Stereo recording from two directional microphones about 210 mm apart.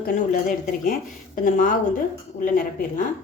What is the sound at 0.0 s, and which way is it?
Speech, 40° left (ahead or behind).